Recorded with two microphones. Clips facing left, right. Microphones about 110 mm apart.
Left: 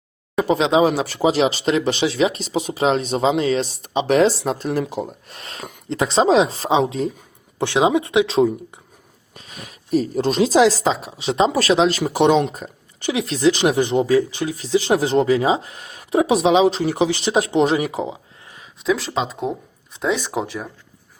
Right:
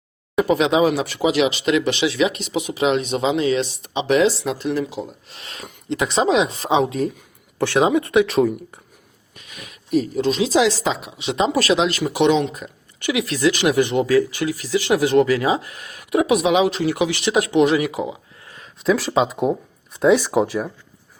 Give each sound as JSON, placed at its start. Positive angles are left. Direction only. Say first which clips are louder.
{"t": 0.3, "sound": "speech", "louder": "even", "side_deg": 30}
{"t": 9.3, "sound": "speech", "louder": "left 2 dB", "side_deg": 35}
{"t": 18.6, "sound": "speech", "louder": "right 2 dB", "side_deg": 0}